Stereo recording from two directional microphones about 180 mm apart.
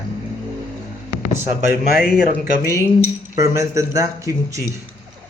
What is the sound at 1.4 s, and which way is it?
Speech, 15° right (ahead or behind).